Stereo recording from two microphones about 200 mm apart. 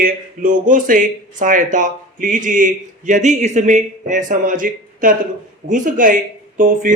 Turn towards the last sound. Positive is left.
turn(degrees=-40)  # may be behind; listen again after turning